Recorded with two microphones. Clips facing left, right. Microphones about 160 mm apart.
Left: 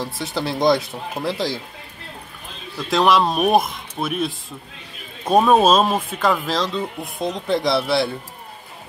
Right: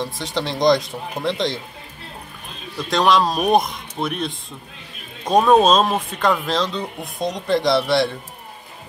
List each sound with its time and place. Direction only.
0.0 s speech: 5° left (ahead or behind)
2.9 s speech: 5° left (ahead or behind)